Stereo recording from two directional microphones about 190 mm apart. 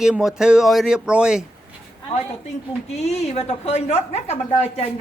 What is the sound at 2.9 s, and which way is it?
A woman's voice, 35° left (ahead or behind).